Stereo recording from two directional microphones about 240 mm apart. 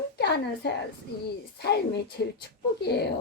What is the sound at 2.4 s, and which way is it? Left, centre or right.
Speech, left.